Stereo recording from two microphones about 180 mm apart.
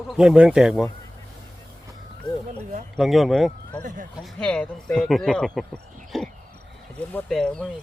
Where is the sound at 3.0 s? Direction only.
Centre (ahead or behind).